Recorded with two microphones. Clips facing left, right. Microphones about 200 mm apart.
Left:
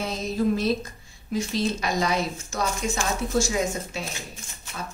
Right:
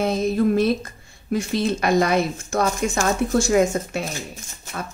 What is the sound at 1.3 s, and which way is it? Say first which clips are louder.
A woman's voice: right 4 dB; 60° right (ahead or behind).